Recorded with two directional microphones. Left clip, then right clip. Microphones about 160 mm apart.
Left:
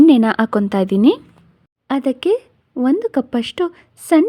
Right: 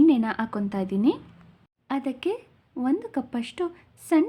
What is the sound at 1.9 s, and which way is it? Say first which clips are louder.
Speech: left 11 dB; 45° left (ahead or behind).